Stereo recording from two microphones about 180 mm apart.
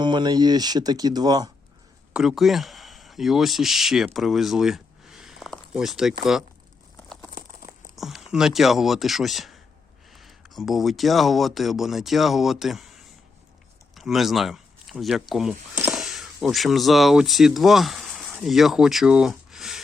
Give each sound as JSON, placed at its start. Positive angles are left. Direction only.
{"t": 0.0, "sound": "speech", "side_deg": -25}
{"t": 2.1, "sound": "speech", "side_deg": 0}
{"t": 7.9, "sound": "speech", "side_deg": 0}